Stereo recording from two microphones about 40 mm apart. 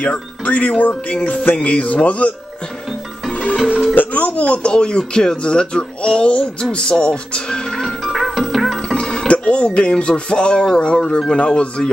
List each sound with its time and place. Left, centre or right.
0.0 s speech: left
3.9 s speech: left; by 7.9 s centre
8.1 s music: centre
8.9 s music: left
9.8 s speech: left